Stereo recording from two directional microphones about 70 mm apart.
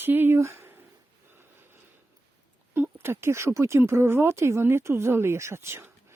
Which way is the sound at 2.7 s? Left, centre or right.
Right.